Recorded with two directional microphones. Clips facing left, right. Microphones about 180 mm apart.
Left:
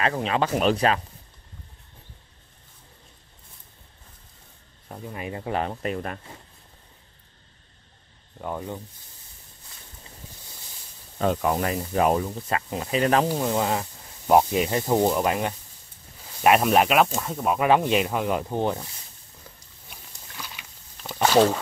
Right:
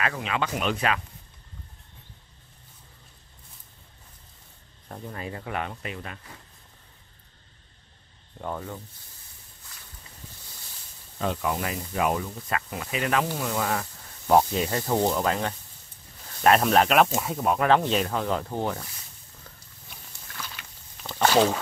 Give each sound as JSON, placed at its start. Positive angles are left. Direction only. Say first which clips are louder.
{"t": 0.0, "sound": "speech", "louder": "left 5 dB", "side_deg": 35}
{"t": 4.8, "sound": "speech", "louder": "left 1 dB", "side_deg": 5}
{"t": 5.2, "sound": "speech", "louder": "left 5 dB", "side_deg": 25}
{"t": 8.4, "sound": "speech", "louder": "left 2 dB", "side_deg": 10}
{"t": 11.1, "sound": "speech", "louder": "left 5 dB", "side_deg": 45}
{"t": 17.6, "sound": "speech", "louder": "left 3 dB", "side_deg": 10}
{"t": 20.1, "sound": "a sound", "louder": "even", "side_deg": 10}